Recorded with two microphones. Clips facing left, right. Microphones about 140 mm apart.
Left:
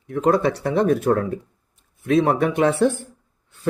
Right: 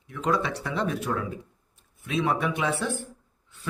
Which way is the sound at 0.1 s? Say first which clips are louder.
Left 8 dB; 50° left (ahead or behind).